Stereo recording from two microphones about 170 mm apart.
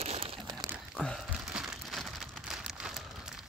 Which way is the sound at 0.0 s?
35° right (ahead or behind).